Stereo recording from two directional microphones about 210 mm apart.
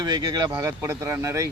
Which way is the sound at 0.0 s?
20° right (ahead or behind).